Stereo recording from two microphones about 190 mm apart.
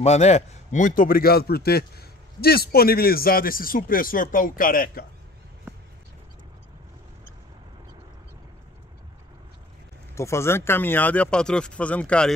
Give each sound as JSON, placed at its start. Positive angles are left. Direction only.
{"t": 0.0, "sound": "a man's voice", "side_deg": 35}
{"t": 10.1, "sound": "speech", "side_deg": 15}